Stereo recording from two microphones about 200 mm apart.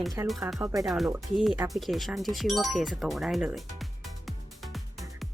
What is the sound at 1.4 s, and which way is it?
Speech, centre (ahead or behind).